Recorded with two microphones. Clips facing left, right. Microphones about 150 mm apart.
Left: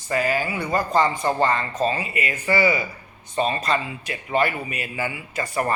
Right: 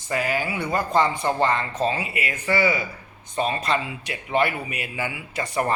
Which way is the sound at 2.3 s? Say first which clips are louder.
Left 1 dB; 5° left (ahead or behind).